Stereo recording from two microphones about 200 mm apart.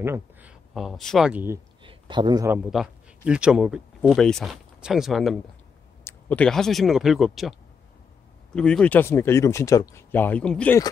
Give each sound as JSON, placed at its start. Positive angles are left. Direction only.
{"t": 0.0, "sound": "speech", "side_deg": -10}
{"t": 1.8, "sound": "a sound", "side_deg": -25}
{"t": 3.3, "sound": "speech", "side_deg": -5}
{"t": 8.5, "sound": "speech", "side_deg": 5}